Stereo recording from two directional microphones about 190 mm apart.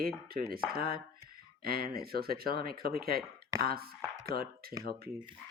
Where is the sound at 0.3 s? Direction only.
50° right (ahead or behind).